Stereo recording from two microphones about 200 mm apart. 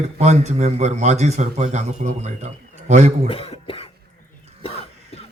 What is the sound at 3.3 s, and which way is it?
Speech, 30° left (ahead or behind).